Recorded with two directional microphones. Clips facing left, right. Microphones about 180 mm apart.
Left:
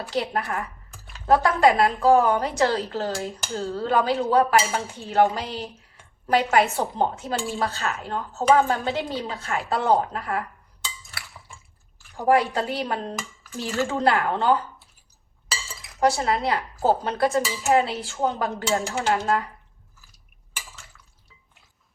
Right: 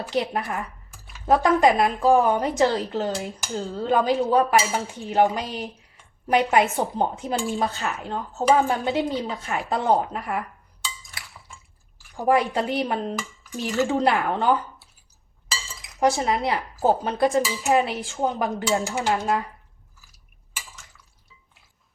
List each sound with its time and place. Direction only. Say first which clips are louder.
0.1 s a woman's voice: right 1 dB; 20° right (ahead or behind)
12.1 s a woman's voice: even; 20° right (ahead or behind)
16.0 s speech: even; 20° right (ahead or behind)